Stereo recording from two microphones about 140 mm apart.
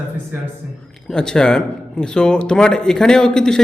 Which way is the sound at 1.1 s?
5° left (ahead or behind).